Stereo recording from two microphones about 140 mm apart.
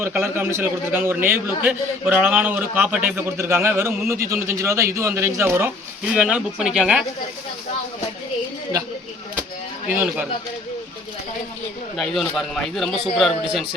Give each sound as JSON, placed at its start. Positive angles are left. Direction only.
{"t": 0.0, "sound": "a man's voice", "side_deg": -15}
{"t": 11.9, "sound": "a man's voice", "side_deg": 0}